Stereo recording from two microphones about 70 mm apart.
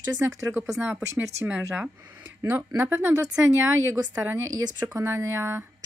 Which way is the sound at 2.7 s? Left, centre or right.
Right.